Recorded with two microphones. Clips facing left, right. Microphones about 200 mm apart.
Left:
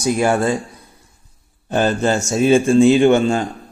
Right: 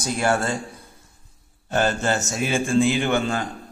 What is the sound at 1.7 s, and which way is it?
A man's voice, 15° left (ahead or behind).